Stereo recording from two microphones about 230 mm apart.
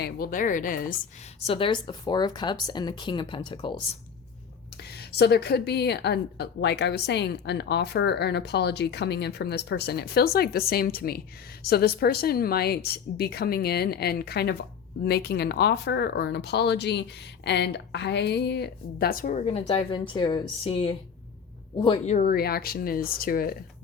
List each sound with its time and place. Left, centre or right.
0.0 s speech: left
1.5 s speech: left
4.8 s a woman's voice: left
22.1 s speech: left